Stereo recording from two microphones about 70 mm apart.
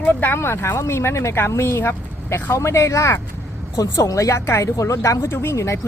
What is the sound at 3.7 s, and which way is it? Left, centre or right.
Speech, left.